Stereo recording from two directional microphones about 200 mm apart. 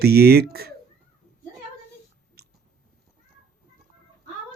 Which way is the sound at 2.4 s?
50° right (ahead or behind).